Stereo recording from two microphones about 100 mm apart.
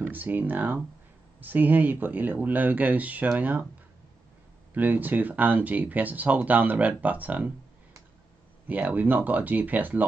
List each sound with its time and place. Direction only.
0.0 s speech: 20° right (ahead or behind)
4.7 s speech: 20° right (ahead or behind)
8.6 s speech: 15° right (ahead or behind)